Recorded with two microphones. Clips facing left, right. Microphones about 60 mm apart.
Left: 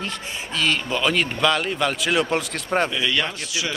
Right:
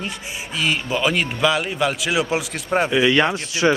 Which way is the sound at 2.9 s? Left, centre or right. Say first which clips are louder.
Right 7 dB; right.